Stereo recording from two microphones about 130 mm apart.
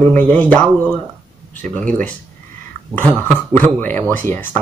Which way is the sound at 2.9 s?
10° left (ahead or behind).